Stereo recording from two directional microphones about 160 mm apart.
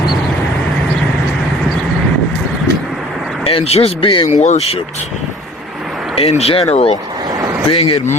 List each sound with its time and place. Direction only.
3.4 s speech: 40° left (ahead or behind)
4.4 s speech: 45° left (ahead or behind)
6.1 s speech: 40° left (ahead or behind)